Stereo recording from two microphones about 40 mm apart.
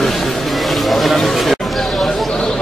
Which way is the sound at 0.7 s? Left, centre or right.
Centre.